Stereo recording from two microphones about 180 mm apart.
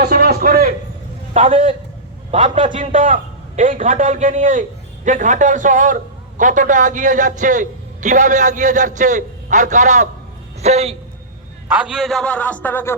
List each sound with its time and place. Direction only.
0.0 s a sound: 60° right (ahead or behind)
1.3 s a man's voice: 45° right (ahead or behind)
11.8 s speech: centre (ahead or behind)